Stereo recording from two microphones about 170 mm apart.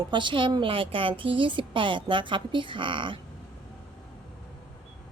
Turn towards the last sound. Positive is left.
turn(degrees=-30)  # may be behind; listen again after turning